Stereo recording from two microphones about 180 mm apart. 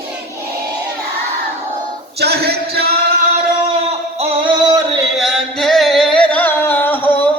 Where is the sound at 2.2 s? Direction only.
65° right (ahead or behind).